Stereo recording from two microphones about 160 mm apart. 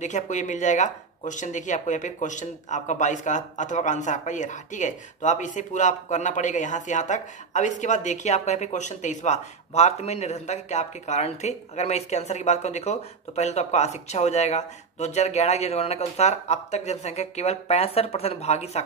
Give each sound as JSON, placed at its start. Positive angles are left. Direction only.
{"t": 0.0, "sound": "speech", "side_deg": 50}